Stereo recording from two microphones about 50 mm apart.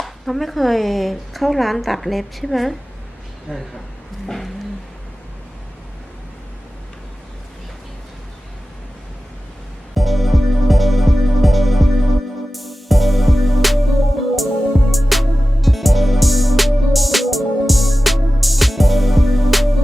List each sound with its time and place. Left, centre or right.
0.0 s speech: centre
3.5 s speech: centre
4.3 s speech: centre
9.9 s music: centre